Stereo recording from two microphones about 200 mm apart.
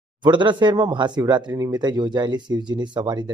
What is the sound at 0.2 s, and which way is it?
Speech, 25° right (ahead or behind).